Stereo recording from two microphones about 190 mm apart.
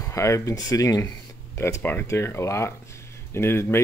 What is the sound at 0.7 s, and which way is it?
Speech, 15° left (ahead or behind).